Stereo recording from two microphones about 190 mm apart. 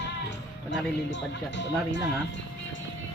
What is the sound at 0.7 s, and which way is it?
Speech, 70° left (ahead or behind).